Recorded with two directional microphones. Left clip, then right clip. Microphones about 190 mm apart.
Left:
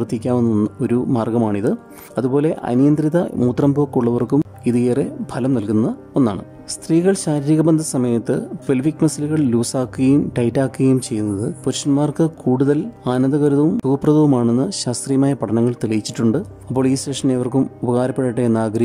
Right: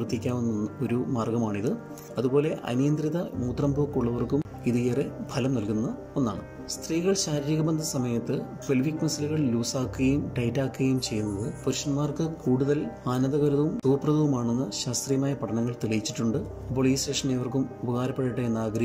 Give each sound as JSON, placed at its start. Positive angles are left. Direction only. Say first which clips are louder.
{"t": 0.0, "sound": "speech", "louder": "left 11 dB", "side_deg": 30}
{"t": 6.9, "sound": "speech", "louder": "left 10 dB", "side_deg": 30}